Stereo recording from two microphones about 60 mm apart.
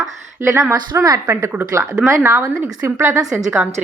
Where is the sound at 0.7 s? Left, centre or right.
Right.